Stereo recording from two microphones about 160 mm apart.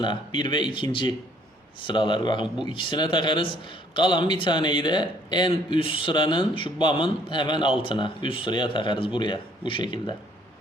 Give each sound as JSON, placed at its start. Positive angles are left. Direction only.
{"t": 0.0, "sound": "speech", "side_deg": 30}